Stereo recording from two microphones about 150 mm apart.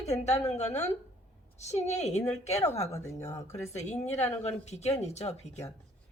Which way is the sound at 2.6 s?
20° left (ahead or behind).